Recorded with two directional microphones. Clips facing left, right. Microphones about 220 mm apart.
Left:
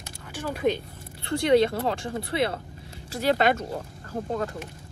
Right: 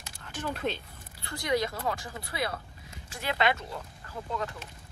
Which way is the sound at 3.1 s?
40° left (ahead or behind).